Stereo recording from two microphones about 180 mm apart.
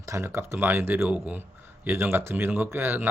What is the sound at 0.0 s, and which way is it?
Speech, 15° right (ahead or behind).